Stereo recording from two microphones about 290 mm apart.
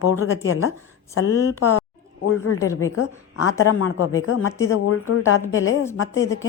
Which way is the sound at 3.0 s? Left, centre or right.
Left.